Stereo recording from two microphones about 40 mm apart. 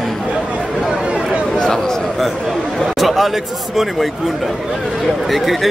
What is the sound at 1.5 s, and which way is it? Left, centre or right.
Speech, centre.